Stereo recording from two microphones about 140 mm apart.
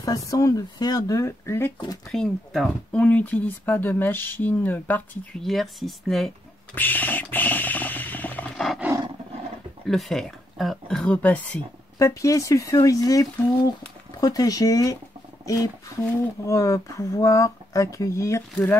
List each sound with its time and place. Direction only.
0.0 s speech: 25° left (ahead or behind)
2.0 s speech: 5° left (ahead or behind)
5.4 s speech: centre (ahead or behind)
6.7 s a sound: 15° left (ahead or behind)
9.8 s speech: centre (ahead or behind)
12.0 s speech: 25° left (ahead or behind)
15.4 s a sound: 25° left (ahead or behind)
16.4 s speech: 20° left (ahead or behind)